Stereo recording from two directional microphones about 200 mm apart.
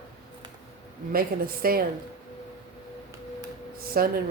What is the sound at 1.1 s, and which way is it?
Speech, 50° right (ahead or behind).